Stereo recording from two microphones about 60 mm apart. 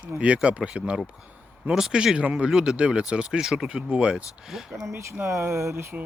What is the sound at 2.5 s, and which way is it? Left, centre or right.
Speech, centre.